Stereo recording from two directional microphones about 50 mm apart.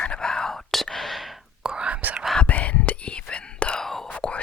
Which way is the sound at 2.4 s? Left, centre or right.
Left.